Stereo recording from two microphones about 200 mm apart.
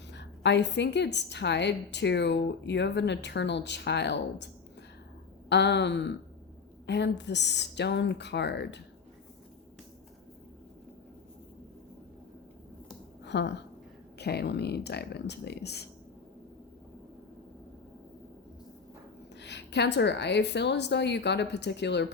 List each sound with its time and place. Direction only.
0.1 s a woman's voice: 60° left (ahead or behind)
5.5 s a woman's voice: 60° left (ahead or behind)
13.2 s a woman's voice: 60° left (ahead or behind)
19.4 s a woman's voice: 60° left (ahead or behind)